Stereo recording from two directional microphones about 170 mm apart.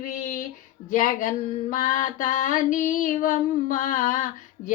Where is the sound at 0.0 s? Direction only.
50° left (ahead or behind).